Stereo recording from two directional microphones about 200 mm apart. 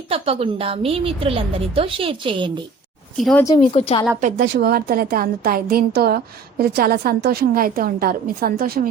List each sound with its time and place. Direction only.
0.1 s a woman's voice: 30° right (ahead or behind)
3.2 s speech: centre (ahead or behind)
3.6 s a woman's voice: 35° left (ahead or behind)
4.2 s a woman's voice: 40° right (ahead or behind)
4.5 s a woman's voice: 50° right (ahead or behind)